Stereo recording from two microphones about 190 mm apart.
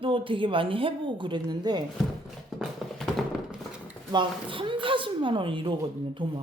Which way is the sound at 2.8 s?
Centre (ahead or behind).